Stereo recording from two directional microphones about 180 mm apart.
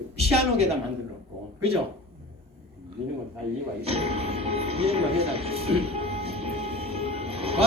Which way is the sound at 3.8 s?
35° right (ahead or behind).